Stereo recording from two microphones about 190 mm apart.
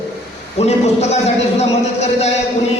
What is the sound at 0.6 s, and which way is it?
Speech, 35° left (ahead or behind).